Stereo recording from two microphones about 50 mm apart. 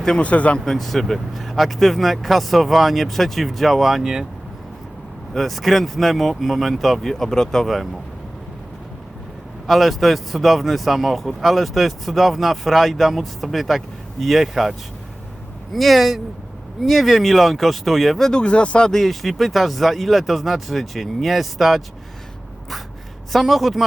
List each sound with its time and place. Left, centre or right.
0.2 s speech: left
0.6 s speech: centre
5.3 s speech: centre
7.1 s speech: centre
9.6 s speech: centre
18.3 s speech: centre
18.9 s speech: centre
23.3 s speech: centre